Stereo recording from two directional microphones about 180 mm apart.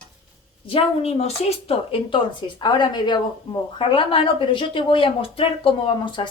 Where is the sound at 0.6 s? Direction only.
30° left (ahead or behind).